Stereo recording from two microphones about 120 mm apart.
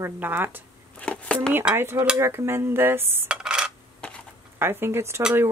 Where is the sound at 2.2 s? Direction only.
20° right (ahead or behind).